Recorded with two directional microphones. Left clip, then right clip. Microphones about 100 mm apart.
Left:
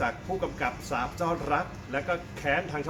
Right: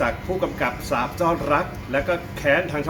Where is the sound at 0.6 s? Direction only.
15° left (ahead or behind).